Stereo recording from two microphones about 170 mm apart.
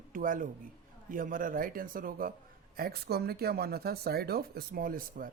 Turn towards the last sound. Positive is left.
turn(degrees=-55)  # may be behind; listen again after turning